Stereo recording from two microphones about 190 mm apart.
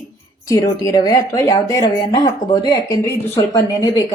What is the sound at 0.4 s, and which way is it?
Speech, 15° left (ahead or behind).